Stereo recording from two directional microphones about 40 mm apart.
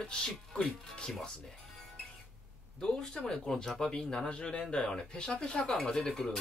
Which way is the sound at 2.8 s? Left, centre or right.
Centre.